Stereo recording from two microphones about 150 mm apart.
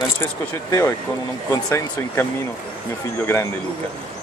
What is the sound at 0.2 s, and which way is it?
Speech, 20° left (ahead or behind).